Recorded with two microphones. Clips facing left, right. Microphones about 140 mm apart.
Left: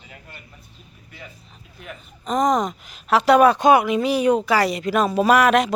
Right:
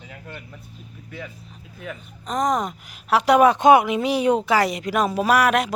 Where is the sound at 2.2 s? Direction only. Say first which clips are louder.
Left 3 dB; centre (ahead or behind).